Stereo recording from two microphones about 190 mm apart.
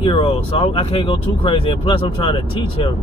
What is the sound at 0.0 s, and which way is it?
Speech, 30° left (ahead or behind).